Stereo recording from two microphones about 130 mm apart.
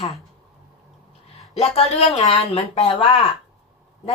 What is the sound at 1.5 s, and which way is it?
A woman's voice, 50° left (ahead or behind).